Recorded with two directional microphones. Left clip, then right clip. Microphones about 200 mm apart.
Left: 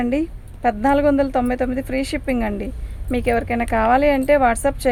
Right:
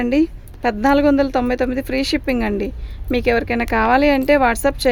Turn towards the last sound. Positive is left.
turn(degrees=-55)  # may be behind; listen again after turning